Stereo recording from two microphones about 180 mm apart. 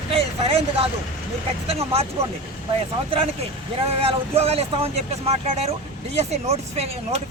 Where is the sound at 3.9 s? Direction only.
35° right (ahead or behind).